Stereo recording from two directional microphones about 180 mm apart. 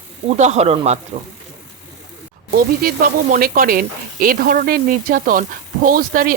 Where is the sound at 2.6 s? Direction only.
55° right (ahead or behind).